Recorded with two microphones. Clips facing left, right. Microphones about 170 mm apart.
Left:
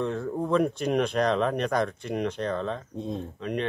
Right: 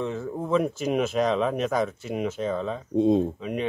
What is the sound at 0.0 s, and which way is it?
Speech, centre (ahead or behind).